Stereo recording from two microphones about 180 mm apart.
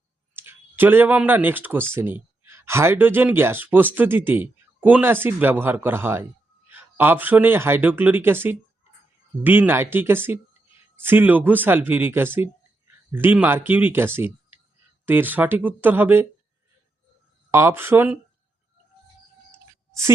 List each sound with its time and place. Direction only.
0.3 s speech: 10° right (ahead or behind)
17.5 s speech: 15° right (ahead or behind)
19.5 s a sound: 15° right (ahead or behind)